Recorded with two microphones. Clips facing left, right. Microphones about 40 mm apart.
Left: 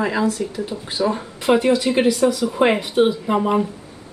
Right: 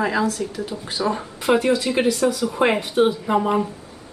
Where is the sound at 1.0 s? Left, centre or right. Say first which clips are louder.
Left 2 dB; centre.